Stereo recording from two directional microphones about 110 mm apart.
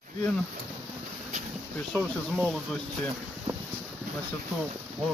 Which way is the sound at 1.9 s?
5° left (ahead or behind).